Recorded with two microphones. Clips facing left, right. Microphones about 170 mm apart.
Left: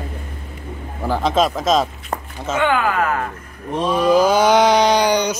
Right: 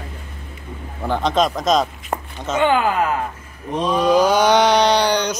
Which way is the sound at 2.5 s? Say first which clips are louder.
Right 1 dB; 30° right (ahead or behind).